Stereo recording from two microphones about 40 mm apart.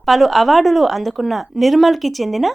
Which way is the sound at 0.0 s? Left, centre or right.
Centre.